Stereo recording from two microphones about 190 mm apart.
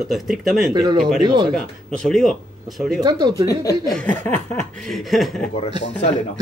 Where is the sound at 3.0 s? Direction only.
20° right (ahead or behind).